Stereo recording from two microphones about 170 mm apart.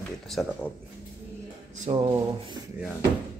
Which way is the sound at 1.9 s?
40° right (ahead or behind).